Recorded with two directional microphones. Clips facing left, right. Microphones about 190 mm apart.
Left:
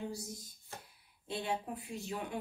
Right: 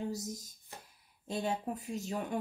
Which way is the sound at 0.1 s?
40° right (ahead or behind).